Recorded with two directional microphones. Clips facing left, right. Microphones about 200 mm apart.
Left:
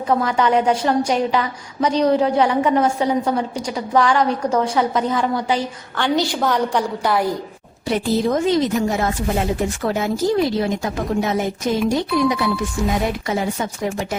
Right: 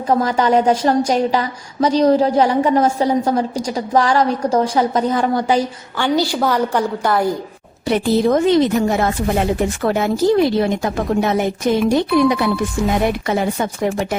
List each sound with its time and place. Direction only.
0.1 s a woman's voice: 40° right (ahead or behind)
6.0 s a woman's voice: 5° right (ahead or behind)
7.9 s speech: 65° right (ahead or behind)